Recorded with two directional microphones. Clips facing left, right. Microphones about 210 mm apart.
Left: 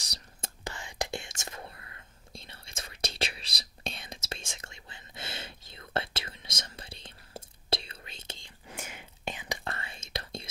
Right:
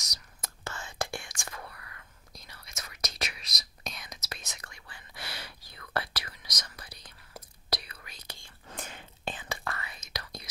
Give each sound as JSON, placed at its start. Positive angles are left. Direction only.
{"t": 0.0, "sound": "whispering", "side_deg": 30}
{"t": 0.7, "sound": "whispering", "side_deg": 15}
{"t": 9.7, "sound": "whispering", "side_deg": 25}